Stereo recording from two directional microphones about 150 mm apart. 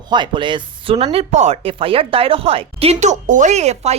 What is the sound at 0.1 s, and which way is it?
Speech, 30° right (ahead or behind).